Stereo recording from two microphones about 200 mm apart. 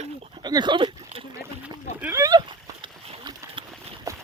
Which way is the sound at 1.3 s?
15° right (ahead or behind).